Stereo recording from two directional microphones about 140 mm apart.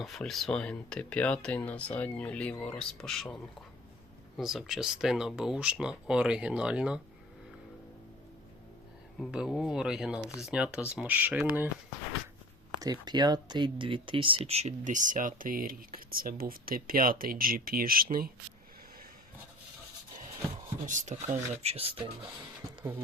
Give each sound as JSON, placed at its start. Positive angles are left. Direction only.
{"t": 0.0, "sound": "speech", "side_deg": 0}
{"t": 4.4, "sound": "speech", "side_deg": 0}
{"t": 9.3, "sound": "speech", "side_deg": -5}
{"t": 12.8, "sound": "speech", "side_deg": -30}
{"t": 20.8, "sound": "speech", "side_deg": -60}
{"t": 21.5, "sound": "speech", "side_deg": -45}